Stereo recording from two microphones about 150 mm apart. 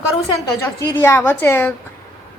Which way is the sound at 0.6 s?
20° left (ahead or behind).